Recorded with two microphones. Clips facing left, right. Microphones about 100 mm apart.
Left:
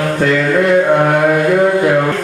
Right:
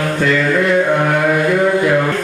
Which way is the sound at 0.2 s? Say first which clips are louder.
Left 2 dB; 40° left (ahead or behind).